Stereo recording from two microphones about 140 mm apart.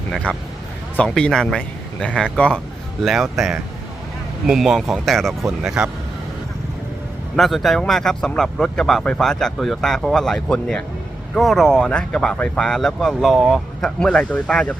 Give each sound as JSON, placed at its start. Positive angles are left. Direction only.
{"t": 0.1, "sound": "speech", "side_deg": 5}
{"t": 7.3, "sound": "speech", "side_deg": 0}